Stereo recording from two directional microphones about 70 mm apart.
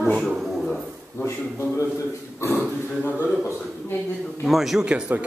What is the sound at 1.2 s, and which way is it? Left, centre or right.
Speech, left.